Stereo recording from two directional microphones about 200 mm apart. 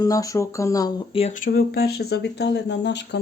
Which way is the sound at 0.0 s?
15° left (ahead or behind).